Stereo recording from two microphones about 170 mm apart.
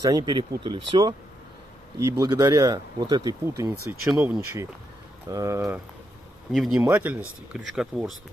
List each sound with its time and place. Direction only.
0.0 s speech: 25° right (ahead or behind)
4.1 s speech: 5° right (ahead or behind)
5.3 s speech: 20° right (ahead or behind)
6.5 s speech: centre (ahead or behind)
6.8 s speech: 10° right (ahead or behind)